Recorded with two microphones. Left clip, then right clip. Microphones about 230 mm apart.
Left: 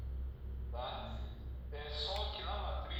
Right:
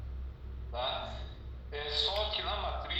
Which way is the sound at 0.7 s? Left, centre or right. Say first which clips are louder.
Right 8 dB; right.